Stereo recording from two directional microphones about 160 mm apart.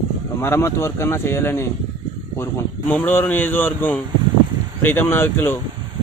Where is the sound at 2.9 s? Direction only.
10° left (ahead or behind).